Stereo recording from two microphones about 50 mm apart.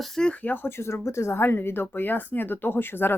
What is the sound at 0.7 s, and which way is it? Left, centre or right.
Speech, left.